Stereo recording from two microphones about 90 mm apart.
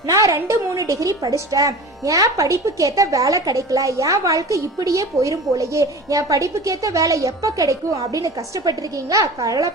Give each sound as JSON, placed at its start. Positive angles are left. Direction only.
{"t": 0.0, "sound": "a woman's voice", "side_deg": -40}